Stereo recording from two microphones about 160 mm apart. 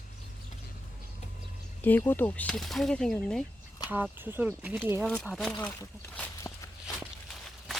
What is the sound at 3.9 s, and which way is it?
Speech, 10° right (ahead or behind).